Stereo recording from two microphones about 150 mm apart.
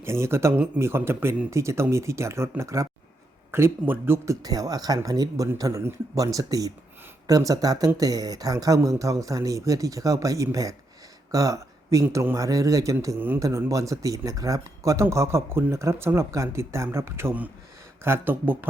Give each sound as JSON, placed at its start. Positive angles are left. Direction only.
{"t": 0.0, "sound": "a man's voice", "side_deg": -15}